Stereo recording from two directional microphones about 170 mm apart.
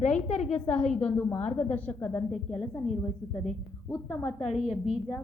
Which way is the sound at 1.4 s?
40° left (ahead or behind).